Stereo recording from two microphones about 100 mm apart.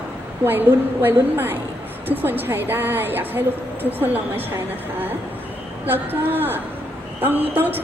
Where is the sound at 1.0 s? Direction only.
20° right (ahead or behind).